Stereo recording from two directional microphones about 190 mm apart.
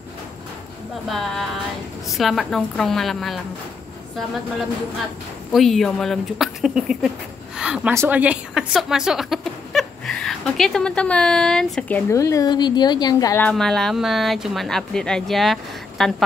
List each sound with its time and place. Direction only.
1.0 s speech: centre (ahead or behind)
5.5 s speech: centre (ahead or behind)
7.5 s a sound: 5° right (ahead or behind)
7.9 s speech: 10° right (ahead or behind)
12.1 s a woman's voice: 15° left (ahead or behind)
13.5 s speech: 5° left (ahead or behind)